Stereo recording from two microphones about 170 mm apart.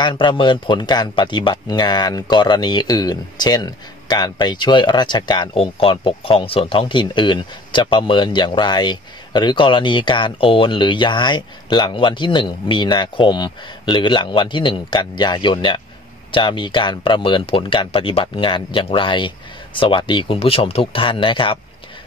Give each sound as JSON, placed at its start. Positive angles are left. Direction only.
{"t": 0.0, "sound": "speech", "side_deg": 25}